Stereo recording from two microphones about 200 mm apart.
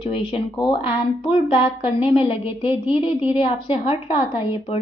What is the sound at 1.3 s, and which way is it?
A woman's voice, 25° left (ahead or behind).